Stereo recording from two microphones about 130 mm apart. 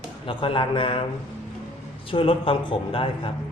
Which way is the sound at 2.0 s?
45° left (ahead or behind).